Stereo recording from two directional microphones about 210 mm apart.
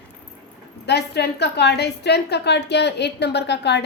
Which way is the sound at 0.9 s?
50° left (ahead or behind).